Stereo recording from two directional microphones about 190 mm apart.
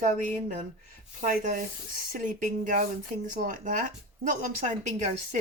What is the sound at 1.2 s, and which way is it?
Speech, 45° right (ahead or behind).